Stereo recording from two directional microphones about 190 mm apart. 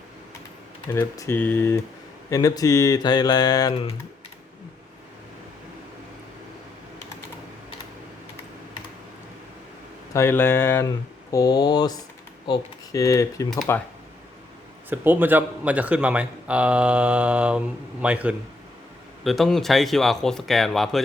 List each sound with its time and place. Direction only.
0.9 s speech: 15° left (ahead or behind)
10.1 s speech: 15° left (ahead or behind)
14.8 s a man's voice: 10° right (ahead or behind)